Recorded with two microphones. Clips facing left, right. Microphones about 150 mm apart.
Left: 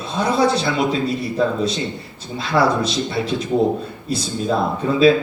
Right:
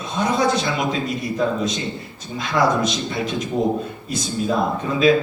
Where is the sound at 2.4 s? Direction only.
30° left (ahead or behind).